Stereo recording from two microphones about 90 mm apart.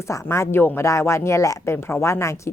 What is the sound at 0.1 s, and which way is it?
Speech, 30° left (ahead or behind).